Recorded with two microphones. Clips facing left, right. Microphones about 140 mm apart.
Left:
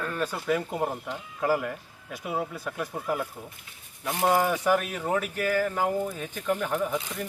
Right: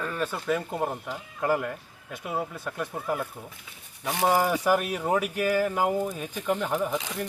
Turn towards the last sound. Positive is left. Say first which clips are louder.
# even
turn(degrees=0)  # may be behind; listen again after turning